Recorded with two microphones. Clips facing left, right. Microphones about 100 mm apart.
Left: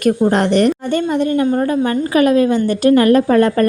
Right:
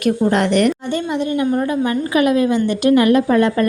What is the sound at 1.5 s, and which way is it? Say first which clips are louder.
A woman's voice: left 2 dB; 30° left (ahead or behind).